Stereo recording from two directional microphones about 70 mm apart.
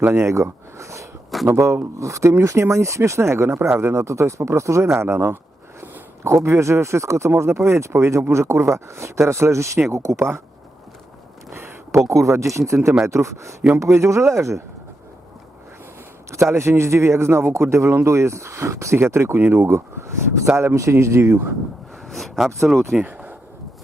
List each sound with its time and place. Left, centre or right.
0.0 s speech: right
5.8 s a sound: right
6.3 s speech: right
11.5 s speech: right
16.3 s speech: right
22.1 s speech: centre
23.0 s speech: right